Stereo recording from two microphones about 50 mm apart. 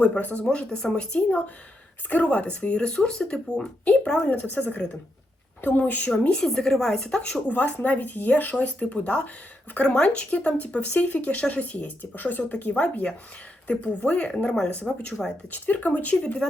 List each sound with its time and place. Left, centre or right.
0.0 s speech: left
0.4 s speech: centre
4.3 s speech: left
6.2 s a woman's voice: centre
7.4 s speech: left
12.8 s a woman's voice: left
15.4 s speech: left